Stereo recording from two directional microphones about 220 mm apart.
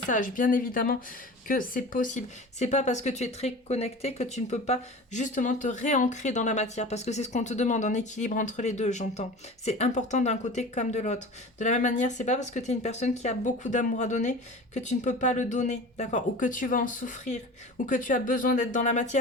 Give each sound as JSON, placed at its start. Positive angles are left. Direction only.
{"t": 0.1, "sound": "speech", "side_deg": 35}